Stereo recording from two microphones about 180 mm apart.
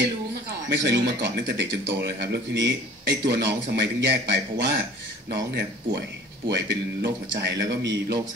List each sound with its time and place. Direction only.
0.0 s speech: 75° right (ahead or behind)